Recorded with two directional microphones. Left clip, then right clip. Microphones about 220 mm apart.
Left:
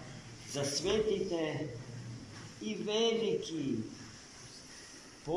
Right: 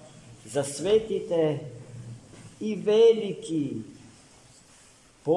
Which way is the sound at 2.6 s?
50° right (ahead or behind).